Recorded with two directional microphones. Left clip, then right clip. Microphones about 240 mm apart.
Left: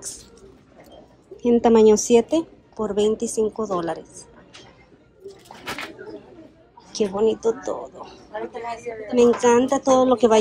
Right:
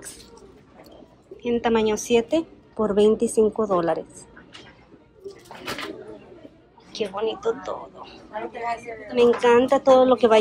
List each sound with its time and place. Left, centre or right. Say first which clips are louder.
1.4 s a woman's voice: left 6 dB; centre
5.2 s a sound: even; centre
6.9 s a woman's voice: left 6 dB; left